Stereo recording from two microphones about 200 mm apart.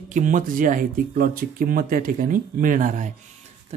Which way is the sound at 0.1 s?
40° right (ahead or behind).